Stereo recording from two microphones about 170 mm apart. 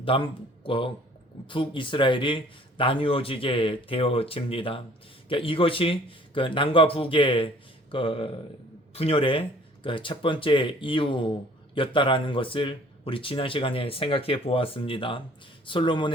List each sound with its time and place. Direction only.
0.0 s speech: 30° left (ahead or behind)